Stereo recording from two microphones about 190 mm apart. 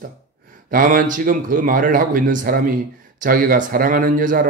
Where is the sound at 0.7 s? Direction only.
45° right (ahead or behind).